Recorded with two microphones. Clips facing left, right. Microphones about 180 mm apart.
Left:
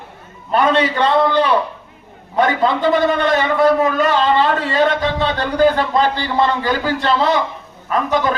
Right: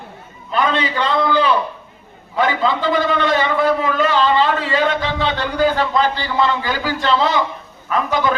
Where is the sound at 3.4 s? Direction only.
45° left (ahead or behind).